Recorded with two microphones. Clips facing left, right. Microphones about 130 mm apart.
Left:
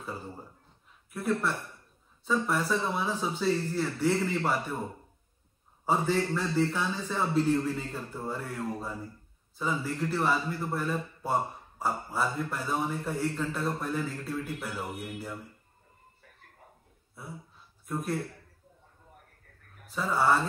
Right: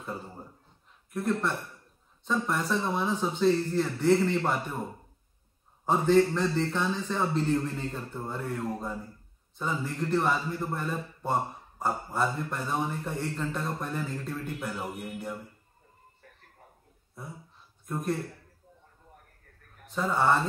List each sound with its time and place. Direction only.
1.1 s a man's voice: 5° left (ahead or behind)
5.9 s a man's voice: 5° left (ahead or behind)
17.2 s a man's voice: 5° left (ahead or behind)
19.9 s a man's voice: centre (ahead or behind)